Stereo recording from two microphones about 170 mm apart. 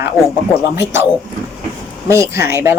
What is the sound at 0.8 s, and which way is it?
Speech, 15° right (ahead or behind).